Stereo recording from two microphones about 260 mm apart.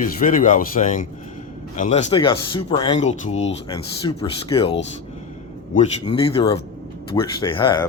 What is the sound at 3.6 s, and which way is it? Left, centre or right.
Speech, centre.